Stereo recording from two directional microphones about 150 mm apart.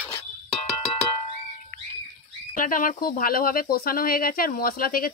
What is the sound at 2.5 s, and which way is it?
Speech, 65° left (ahead or behind).